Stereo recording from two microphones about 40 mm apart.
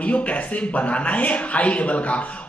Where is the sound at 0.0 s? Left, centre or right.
Left.